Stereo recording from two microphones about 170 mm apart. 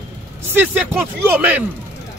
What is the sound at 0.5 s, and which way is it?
Speech, 10° right (ahead or behind).